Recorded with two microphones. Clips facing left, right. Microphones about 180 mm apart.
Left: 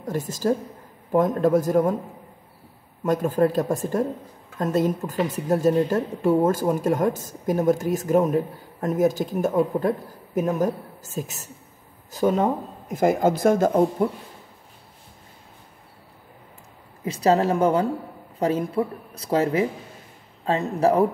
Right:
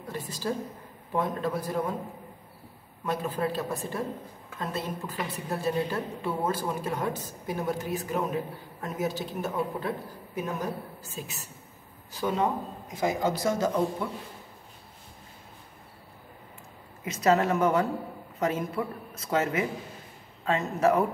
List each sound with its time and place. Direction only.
0.0 s a woman's voice: 45° left (ahead or behind)
3.1 s a woman's voice: 45° left (ahead or behind)
17.0 s speech: 30° left (ahead or behind)